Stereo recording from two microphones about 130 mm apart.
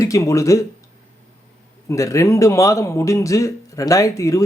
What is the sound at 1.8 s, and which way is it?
Speech, 25° left (ahead or behind).